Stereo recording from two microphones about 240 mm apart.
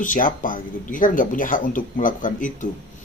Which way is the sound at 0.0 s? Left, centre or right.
Left.